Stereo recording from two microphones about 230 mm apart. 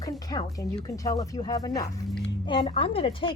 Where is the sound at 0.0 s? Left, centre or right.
Centre.